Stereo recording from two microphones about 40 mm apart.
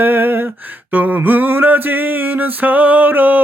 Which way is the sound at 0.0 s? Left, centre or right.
Right.